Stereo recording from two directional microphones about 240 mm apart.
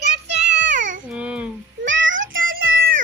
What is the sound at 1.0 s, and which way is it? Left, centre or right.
Babbling, centre.